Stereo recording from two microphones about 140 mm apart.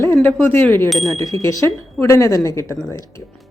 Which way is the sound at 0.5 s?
15° left (ahead or behind).